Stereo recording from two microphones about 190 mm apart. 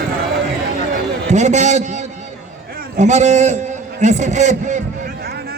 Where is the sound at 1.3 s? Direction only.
40° right (ahead or behind).